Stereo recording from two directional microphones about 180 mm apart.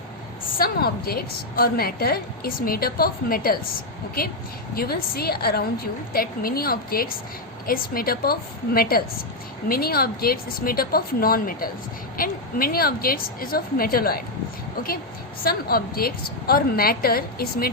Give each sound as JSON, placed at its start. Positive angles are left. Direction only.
{"t": 0.6, "sound": "a woman's voice", "side_deg": 60}
{"t": 4.7, "sound": "a woman's voice", "side_deg": 55}
{"t": 15.4, "sound": "a woman's voice", "side_deg": 55}